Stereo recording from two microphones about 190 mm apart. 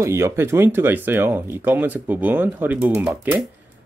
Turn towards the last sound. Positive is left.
turn(degrees=-10)  # may be behind; listen again after turning